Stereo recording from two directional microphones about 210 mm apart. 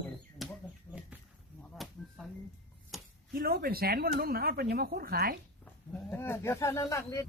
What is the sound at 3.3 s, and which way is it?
Speech, 45° right (ahead or behind).